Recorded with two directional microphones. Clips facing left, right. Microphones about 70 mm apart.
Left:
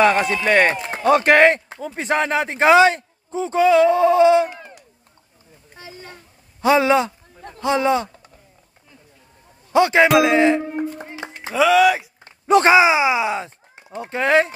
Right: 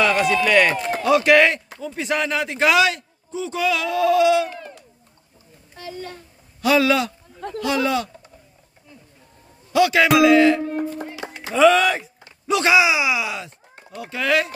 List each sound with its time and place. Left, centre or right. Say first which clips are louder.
0.0 s a man's voice: left 2 dB; left
0.7 s run: right 4 dB; centre
1.0 s a man's voice: left 2 dB; left
4.5 s a sound: right 2 dB; centre
5.8 s a sound: right 6 dB; centre
6.6 s speech: left 2 dB; left
7.3 s a sound: right 9 dB; right
7.6 s speech: left 3 dB; left
9.7 s speech: left 2 dB; left
11.1 s music: even; left
11.5 s speech: left 1 dB; centre
12.3 s speech: left 5 dB; left